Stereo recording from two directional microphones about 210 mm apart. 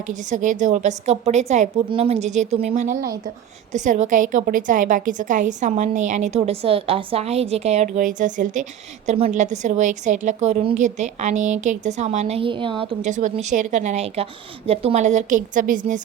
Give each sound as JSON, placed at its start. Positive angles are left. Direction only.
{"t": 0.1, "sound": "a woman's voice", "side_deg": -35}